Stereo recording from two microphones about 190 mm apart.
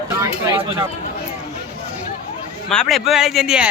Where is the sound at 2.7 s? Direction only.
Centre (ahead or behind).